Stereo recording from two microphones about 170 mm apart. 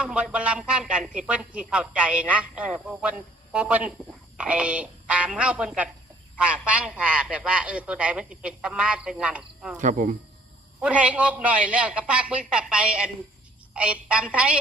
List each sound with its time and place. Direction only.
0.0 s a man's voice: 5° right (ahead or behind)
9.8 s speech: 50° right (ahead or behind)
10.8 s a man's voice: 5° right (ahead or behind)